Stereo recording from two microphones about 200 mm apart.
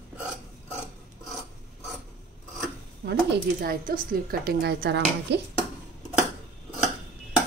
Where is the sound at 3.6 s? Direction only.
50° right (ahead or behind).